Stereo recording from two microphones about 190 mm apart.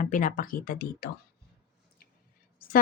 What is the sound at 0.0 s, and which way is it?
Speech, 45° left (ahead or behind).